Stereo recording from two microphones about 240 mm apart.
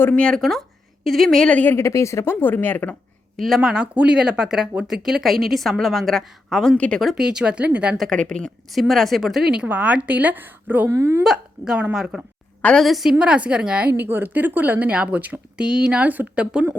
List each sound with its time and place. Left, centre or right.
0.0 s a woman's voice: centre